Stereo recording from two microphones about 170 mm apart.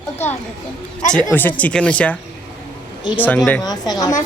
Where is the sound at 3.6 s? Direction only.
20° left (ahead or behind).